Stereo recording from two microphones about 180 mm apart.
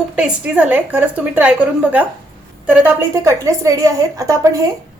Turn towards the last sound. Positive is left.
turn(degrees=-20)  # may be behind; listen again after turning